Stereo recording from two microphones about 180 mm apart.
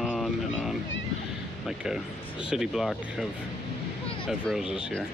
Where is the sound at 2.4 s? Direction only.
5° right (ahead or behind).